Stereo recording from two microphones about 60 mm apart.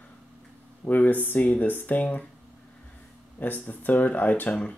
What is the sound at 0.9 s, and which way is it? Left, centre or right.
Speech, left.